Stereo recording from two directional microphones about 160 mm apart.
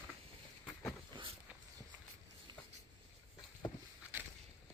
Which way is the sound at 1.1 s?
30° right (ahead or behind).